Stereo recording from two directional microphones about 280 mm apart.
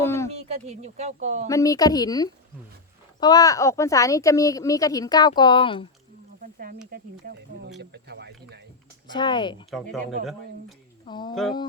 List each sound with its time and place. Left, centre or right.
0.0 s a sound: centre
0.3 s speech: right
1.5 s speech: centre
6.4 s speech: right
9.0 s speech: centre
11.0 s speech: centre